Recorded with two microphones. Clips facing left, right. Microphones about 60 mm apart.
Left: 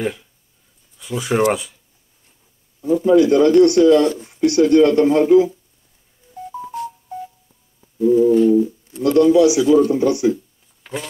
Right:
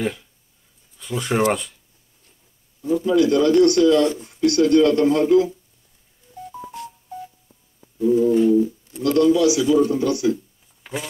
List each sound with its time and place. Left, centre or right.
0.0 s speech: centre
3.0 s speech: left
6.3 s music: centre
7.2 s telephone dialing: centre
9.0 s speech: centre
10.3 s a sound: centre